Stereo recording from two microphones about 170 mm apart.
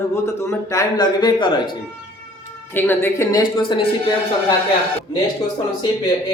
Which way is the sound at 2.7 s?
10° left (ahead or behind).